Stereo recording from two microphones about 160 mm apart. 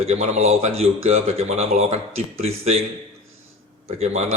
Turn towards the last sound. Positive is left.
turn(degrees=-40)  # may be behind; listen again after turning